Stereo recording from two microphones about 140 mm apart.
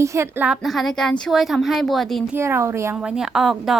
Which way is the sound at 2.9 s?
5° right (ahead or behind).